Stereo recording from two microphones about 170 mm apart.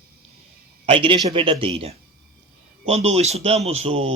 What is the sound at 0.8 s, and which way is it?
Speech, 30° right (ahead or behind).